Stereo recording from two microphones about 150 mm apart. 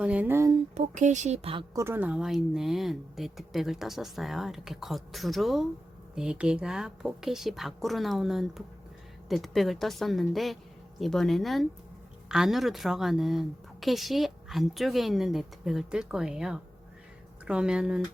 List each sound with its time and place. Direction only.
0.0 s speech: 10° right (ahead or behind)
0.7 s speech: 55° right (ahead or behind)
1.7 s speech: 15° right (ahead or behind)